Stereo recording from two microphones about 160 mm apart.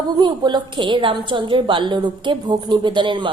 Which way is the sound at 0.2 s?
25° right (ahead or behind).